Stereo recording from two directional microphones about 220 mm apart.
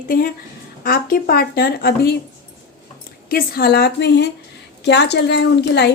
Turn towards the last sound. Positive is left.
turn(degrees=50)  # may be behind; listen again after turning